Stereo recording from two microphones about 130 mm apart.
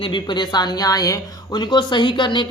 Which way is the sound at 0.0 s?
35° left (ahead or behind).